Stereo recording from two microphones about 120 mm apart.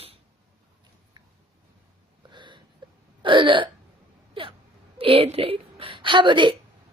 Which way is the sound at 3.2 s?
45° right (ahead or behind).